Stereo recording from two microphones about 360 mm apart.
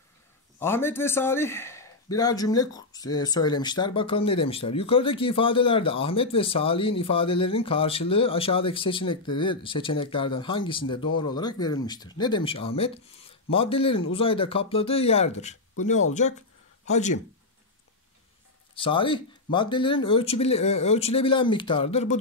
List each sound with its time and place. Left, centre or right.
0.6 s a man's voice: centre
18.8 s a man's voice: centre